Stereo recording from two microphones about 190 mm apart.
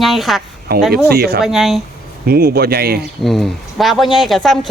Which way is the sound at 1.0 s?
55° right (ahead or behind).